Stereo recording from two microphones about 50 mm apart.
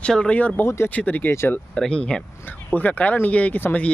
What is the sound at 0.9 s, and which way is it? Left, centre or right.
Speech, left.